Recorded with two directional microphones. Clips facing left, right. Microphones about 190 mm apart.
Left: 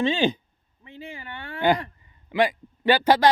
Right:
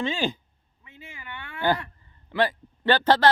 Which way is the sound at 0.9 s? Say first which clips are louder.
Left 6 dB; 35° left (ahead or behind).